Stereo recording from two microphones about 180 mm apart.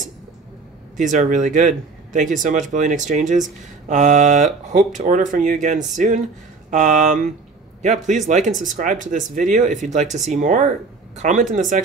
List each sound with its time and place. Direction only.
0.9 s a man's voice: 45° right (ahead or behind)